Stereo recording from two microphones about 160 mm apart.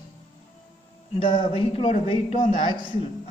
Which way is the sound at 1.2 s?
30° left (ahead or behind).